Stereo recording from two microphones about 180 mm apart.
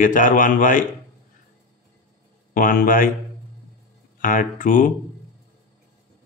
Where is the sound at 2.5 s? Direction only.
50° left (ahead or behind).